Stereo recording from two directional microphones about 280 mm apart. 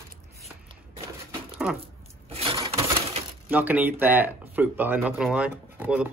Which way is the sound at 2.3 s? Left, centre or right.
Centre.